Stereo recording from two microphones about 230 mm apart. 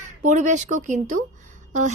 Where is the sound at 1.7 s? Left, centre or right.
Right.